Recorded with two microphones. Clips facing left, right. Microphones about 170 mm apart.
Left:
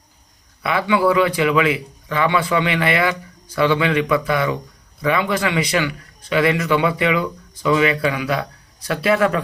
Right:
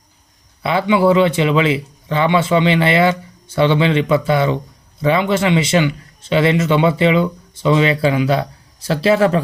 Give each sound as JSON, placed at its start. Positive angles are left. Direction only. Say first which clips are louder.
{"t": 0.6, "sound": "a man's voice", "louder": "right 3 dB", "side_deg": -30}